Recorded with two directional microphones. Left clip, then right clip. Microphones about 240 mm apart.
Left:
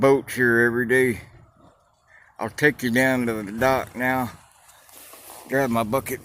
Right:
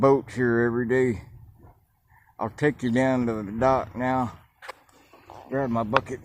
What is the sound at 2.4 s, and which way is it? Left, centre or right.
Speech, centre.